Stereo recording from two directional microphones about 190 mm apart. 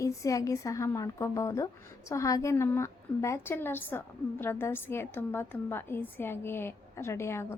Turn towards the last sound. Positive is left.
turn(degrees=15)  # may be behind; listen again after turning